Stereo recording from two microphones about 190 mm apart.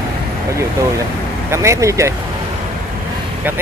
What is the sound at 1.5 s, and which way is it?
Speech, 15° right (ahead or behind).